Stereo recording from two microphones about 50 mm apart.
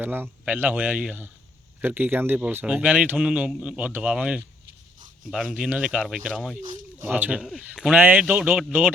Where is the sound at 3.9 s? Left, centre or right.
Right.